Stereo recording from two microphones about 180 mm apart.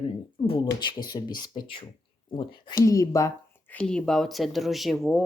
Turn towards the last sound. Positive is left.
turn(degrees=0)  # may be behind; listen again after turning